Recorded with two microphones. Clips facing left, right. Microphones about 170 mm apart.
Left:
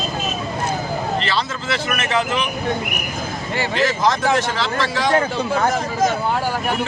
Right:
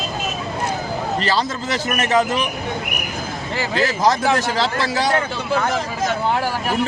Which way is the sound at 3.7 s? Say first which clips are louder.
Right 1 dB; 35° right (ahead or behind).